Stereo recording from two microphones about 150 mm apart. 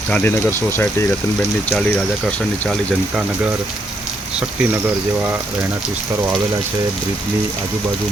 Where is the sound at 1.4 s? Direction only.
5° left (ahead or behind).